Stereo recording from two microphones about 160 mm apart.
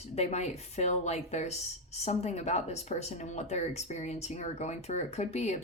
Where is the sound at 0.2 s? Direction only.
45° left (ahead or behind).